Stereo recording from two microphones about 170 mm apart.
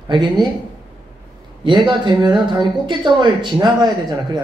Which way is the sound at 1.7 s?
25° right (ahead or behind).